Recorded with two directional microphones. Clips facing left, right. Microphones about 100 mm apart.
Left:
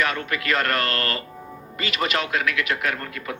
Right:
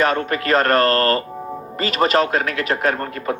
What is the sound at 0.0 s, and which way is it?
Speech, 35° right (ahead or behind).